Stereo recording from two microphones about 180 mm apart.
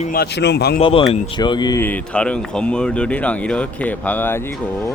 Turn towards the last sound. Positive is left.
turn(degrees=10)  # may be behind; listen again after turning